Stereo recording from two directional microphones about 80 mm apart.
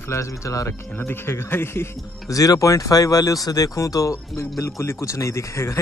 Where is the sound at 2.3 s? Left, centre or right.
Left.